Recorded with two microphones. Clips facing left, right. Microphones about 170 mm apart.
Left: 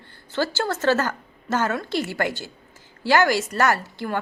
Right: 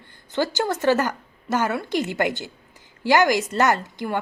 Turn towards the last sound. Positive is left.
turn(degrees=-15)  # may be behind; listen again after turning